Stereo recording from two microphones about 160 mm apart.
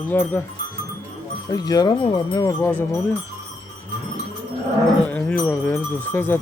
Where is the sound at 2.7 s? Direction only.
10° left (ahead or behind).